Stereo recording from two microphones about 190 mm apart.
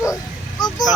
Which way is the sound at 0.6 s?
20° left (ahead or behind).